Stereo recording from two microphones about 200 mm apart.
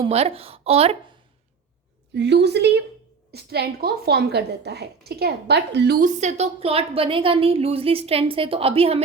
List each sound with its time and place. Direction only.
0.0 s a woman's voice: 30° right (ahead or behind)
2.1 s a woman's voice: 60° right (ahead or behind); by 9.0 s 30° right (ahead or behind)